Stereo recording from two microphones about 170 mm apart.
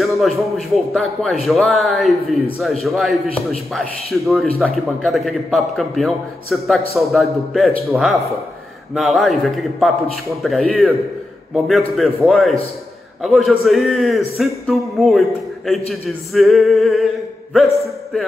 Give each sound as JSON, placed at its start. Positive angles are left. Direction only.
{"t": 0.2, "sound": "a man's voice", "side_deg": 0}